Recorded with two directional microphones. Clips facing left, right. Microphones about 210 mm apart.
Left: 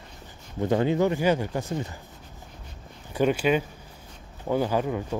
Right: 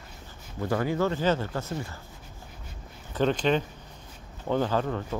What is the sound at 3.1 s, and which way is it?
Speech, 10° left (ahead or behind).